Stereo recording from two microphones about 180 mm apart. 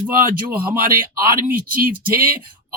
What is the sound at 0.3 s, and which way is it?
Speech, 55° right (ahead or behind).